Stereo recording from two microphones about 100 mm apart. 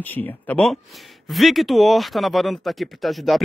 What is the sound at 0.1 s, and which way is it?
Speech, 15° left (ahead or behind).